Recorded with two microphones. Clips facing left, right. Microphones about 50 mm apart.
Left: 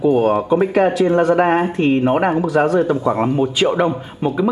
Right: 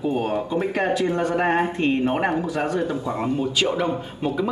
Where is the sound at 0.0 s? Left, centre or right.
Left.